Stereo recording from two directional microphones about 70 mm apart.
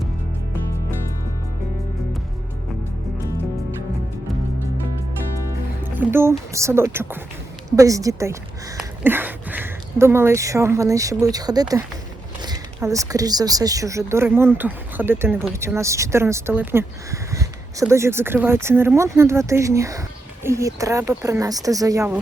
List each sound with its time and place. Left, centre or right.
5.8 s speech: right
7.8 s speech: right
9.0 s speech: right
12.8 s speech: right
14.3 s speech: right
17.1 s a sound: right
18.3 s speech: right